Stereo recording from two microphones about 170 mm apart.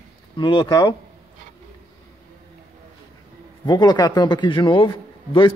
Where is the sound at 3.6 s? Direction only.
25° left (ahead or behind).